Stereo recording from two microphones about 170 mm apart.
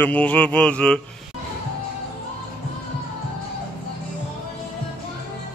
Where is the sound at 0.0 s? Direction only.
10° left (ahead or behind).